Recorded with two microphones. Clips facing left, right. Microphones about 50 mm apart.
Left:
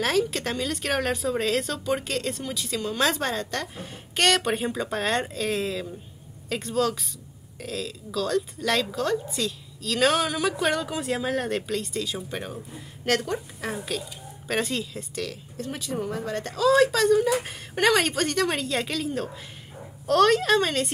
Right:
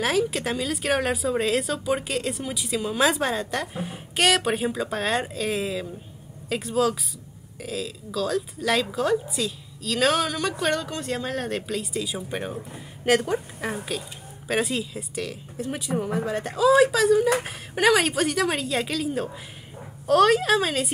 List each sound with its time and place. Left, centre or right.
0.0 s a woman's voice: centre